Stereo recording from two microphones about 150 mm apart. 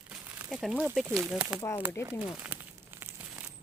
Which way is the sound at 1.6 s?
25° left (ahead or behind).